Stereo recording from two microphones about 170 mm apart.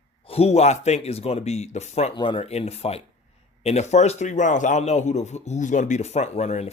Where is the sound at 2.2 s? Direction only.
30° left (ahead or behind).